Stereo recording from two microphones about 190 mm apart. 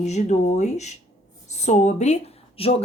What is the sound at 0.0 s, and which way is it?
Speech, 35° left (ahead or behind).